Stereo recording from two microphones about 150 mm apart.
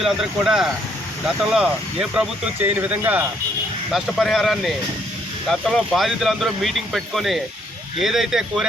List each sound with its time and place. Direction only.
0.0 s speech: 5° right (ahead or behind)
3.9 s speech: centre (ahead or behind)